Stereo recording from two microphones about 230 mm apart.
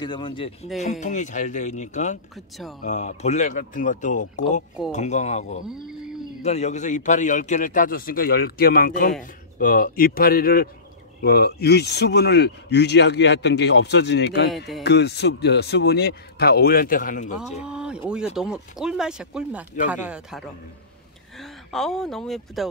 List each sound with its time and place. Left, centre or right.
0.0 s speech: centre
0.8 s a man's voice: left
5.9 s a sound: centre
6.4 s a man's voice: left
17.4 s speech: centre